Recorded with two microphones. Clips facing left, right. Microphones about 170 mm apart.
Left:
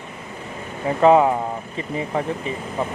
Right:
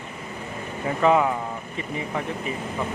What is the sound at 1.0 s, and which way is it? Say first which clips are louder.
Speech: left 5 dB; 35° left (ahead or behind).